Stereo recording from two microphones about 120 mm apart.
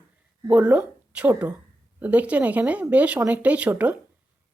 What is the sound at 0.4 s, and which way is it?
A woman's voice, 10° right (ahead or behind).